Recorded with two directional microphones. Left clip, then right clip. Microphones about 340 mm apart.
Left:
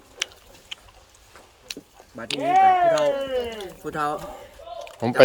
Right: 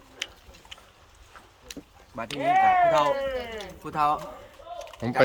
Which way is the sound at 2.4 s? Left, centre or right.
Left.